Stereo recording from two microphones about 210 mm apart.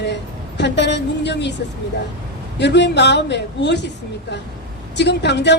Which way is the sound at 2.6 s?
55° left (ahead or behind).